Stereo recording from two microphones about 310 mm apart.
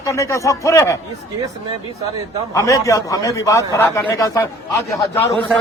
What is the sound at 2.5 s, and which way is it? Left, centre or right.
Speech, centre.